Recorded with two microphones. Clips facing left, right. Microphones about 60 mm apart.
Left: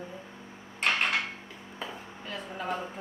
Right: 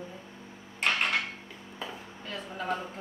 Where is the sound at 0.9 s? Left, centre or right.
Centre.